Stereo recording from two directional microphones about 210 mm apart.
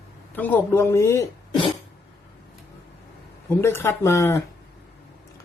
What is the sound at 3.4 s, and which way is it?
Speech, 10° left (ahead or behind).